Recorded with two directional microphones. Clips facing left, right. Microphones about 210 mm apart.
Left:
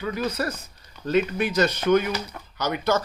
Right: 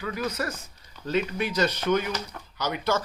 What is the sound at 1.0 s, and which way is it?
Speech, 50° left (ahead or behind).